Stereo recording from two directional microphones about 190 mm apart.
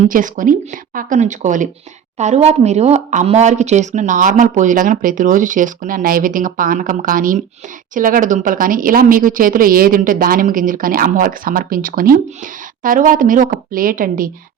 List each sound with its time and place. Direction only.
0.1 s a woman's voice: 45° right (ahead or behind)